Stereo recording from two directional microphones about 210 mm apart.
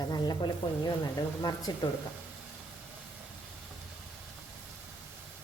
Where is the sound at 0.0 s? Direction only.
20° left (ahead or behind).